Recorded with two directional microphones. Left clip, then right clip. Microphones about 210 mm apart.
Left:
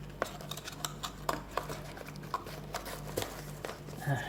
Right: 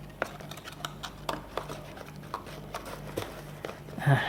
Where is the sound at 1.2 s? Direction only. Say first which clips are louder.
Even; 10° right (ahead or behind).